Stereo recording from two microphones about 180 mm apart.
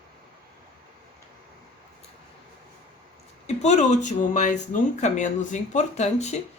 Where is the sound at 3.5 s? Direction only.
40° left (ahead or behind).